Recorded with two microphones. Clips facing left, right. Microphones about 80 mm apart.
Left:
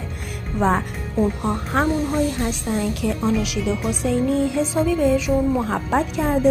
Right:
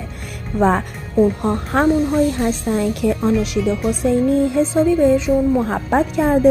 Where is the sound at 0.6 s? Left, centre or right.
Right.